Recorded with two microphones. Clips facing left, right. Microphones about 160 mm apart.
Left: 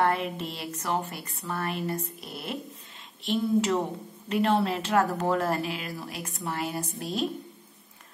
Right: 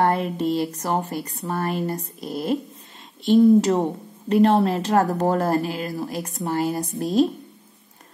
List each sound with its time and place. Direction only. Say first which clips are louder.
0.0 s speech: right 6 dB; 35° right (ahead or behind)